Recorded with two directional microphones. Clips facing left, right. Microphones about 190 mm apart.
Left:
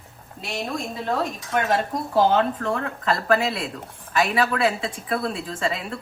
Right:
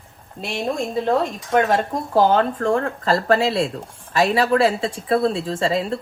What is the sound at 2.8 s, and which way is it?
Speech, 30° right (ahead or behind).